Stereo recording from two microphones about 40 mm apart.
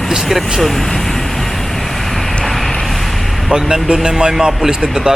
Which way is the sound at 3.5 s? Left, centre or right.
Right.